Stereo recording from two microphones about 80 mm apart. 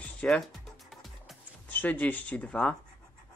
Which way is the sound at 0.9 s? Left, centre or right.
Centre.